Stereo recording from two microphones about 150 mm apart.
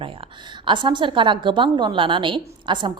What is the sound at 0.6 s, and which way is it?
A woman's voice, 30° right (ahead or behind).